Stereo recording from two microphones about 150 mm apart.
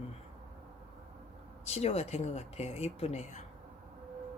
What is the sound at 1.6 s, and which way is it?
A woman's voice, 45° left (ahead or behind).